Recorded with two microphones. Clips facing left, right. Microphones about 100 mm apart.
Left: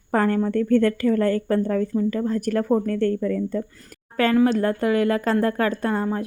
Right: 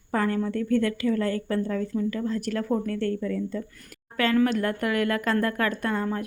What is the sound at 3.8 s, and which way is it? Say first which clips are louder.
Speech: left 4 dB; 35° left (ahead or behind).